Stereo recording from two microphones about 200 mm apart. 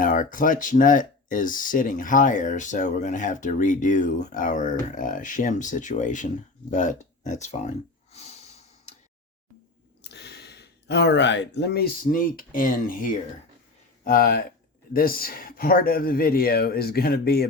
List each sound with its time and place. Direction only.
0.0 s speech: 40° left (ahead or behind)
8.1 s snort: 30° left (ahead or behind)
10.0 s speech: 55° left (ahead or behind)